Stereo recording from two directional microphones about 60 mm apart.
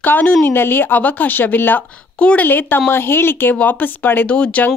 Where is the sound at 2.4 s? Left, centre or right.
Left.